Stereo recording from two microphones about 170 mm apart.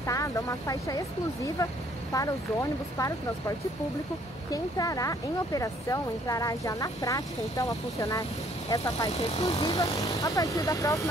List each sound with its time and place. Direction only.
0.0 s speech: 20° left (ahead or behind)